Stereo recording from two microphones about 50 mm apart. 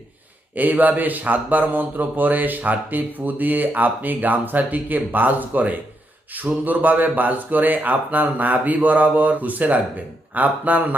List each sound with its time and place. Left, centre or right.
0.5 s speech: right